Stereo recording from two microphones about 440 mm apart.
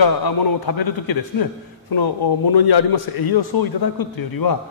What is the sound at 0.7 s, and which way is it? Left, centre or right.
A man's voice, left.